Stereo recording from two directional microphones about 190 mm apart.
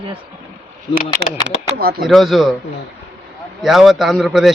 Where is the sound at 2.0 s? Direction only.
Centre (ahead or behind).